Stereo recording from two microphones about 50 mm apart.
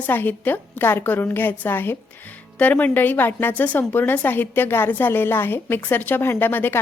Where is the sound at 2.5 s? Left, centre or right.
Left.